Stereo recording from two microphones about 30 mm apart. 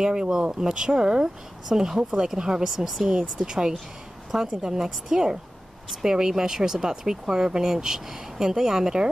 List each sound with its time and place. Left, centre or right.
0.0 s speech: centre